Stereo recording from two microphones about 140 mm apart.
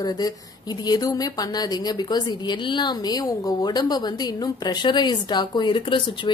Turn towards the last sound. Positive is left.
turn(degrees=35)  # may be behind; listen again after turning